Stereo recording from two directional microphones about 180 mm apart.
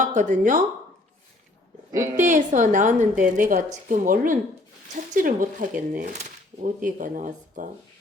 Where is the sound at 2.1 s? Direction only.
45° right (ahead or behind).